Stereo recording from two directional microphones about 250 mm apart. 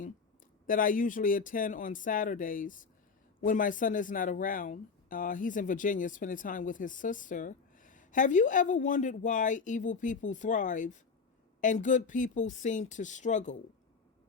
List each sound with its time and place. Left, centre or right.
0.7 s speech: left